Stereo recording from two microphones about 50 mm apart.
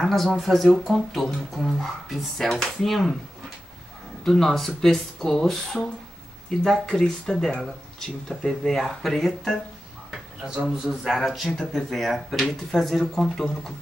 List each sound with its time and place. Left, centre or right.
0.0 s speech: centre
10.4 s speech: centre
10.9 s speech: centre